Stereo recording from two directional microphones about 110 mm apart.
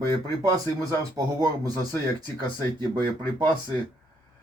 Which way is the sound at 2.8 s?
45° right (ahead or behind).